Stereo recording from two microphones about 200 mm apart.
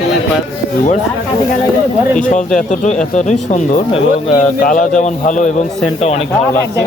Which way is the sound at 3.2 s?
35° left (ahead or behind).